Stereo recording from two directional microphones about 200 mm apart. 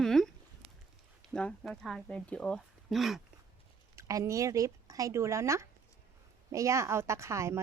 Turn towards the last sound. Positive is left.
turn(degrees=-15)  # may be behind; listen again after turning